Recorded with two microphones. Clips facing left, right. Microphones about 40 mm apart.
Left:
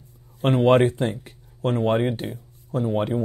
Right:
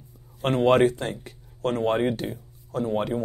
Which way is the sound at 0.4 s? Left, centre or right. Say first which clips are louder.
Left 3 dB; centre.